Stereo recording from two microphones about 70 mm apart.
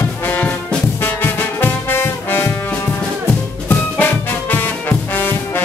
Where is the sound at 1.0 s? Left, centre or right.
Left.